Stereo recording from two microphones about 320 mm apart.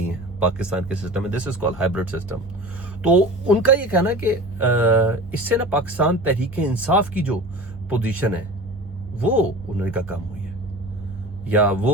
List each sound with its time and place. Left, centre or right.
0.3 s a woman's voice: centre
11.4 s a woman's voice: centre